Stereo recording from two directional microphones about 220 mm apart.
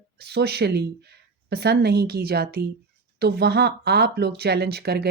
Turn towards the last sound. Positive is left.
turn(degrees=-45)  # may be behind; listen again after turning